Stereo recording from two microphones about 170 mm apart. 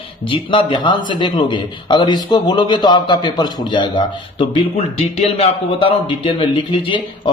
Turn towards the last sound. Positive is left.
turn(degrees=30)  # may be behind; listen again after turning